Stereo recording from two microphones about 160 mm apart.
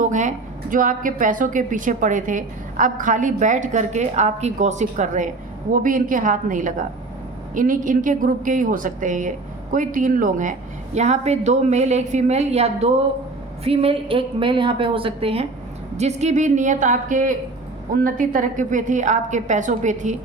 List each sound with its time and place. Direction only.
0.0 s a woman's voice: 50° right (ahead or behind)